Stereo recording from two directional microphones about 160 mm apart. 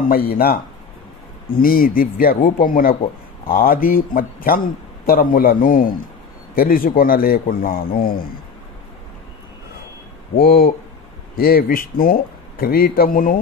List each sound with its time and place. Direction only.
0.1 s speech: 70° left (ahead or behind)
1.6 s speech: 65° left (ahead or behind)
10.3 s speech: 65° left (ahead or behind)